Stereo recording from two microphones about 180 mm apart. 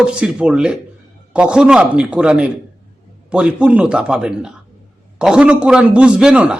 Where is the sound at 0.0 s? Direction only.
5° right (ahead or behind).